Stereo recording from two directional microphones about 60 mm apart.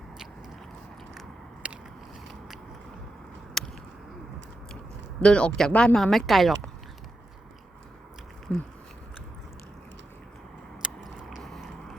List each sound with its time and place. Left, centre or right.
1.6 s biting: right
3.6 s a sound: centre
5.2 s speech: centre
8.5 s biting: left
10.8 s biting: centre
11.3 s vehicle: centre